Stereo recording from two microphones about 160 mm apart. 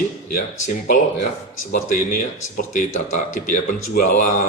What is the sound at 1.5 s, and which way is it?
Speech, 55° left (ahead or behind).